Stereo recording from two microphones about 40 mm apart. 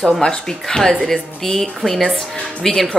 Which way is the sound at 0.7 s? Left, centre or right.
Centre.